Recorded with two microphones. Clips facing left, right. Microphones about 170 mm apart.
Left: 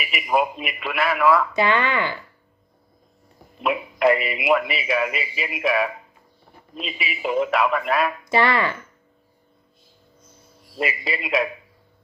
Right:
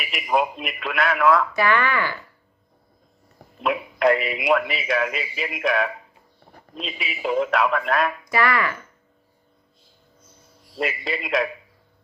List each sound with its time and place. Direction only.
0.0 s a man's voice: 5° left (ahead or behind)
1.5 s speech: 20° left (ahead or behind)
3.6 s a man's voice: 5° left (ahead or behind)
8.2 s speech: 25° left (ahead or behind)
10.8 s a man's voice: 5° left (ahead or behind)